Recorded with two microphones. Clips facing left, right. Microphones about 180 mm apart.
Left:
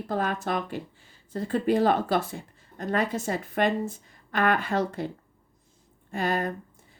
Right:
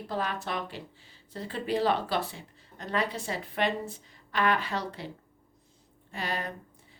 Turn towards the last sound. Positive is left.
turn(degrees=50)  # may be behind; listen again after turning